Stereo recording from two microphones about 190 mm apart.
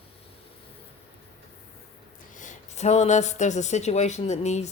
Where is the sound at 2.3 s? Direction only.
40° left (ahead or behind).